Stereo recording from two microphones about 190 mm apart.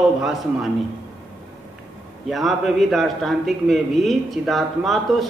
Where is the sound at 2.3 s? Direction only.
Centre (ahead or behind).